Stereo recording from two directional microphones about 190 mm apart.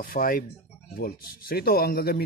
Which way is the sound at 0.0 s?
50° left (ahead or behind).